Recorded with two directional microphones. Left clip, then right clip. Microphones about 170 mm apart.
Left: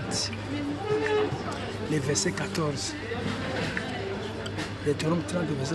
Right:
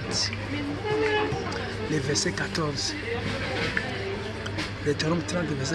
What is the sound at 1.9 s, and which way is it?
Speech, 20° left (ahead or behind).